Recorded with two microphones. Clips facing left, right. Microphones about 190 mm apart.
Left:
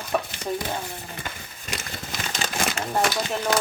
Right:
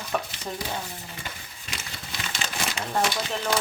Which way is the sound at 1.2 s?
45° left (ahead or behind).